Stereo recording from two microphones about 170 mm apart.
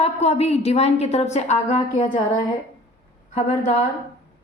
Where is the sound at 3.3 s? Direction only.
40° left (ahead or behind).